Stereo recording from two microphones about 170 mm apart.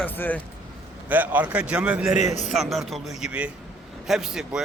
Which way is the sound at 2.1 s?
45° left (ahead or behind).